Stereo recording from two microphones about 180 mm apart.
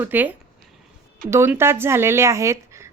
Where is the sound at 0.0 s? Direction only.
10° right (ahead or behind).